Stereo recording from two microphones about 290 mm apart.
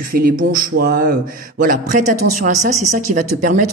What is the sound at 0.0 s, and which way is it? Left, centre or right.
Speech, right.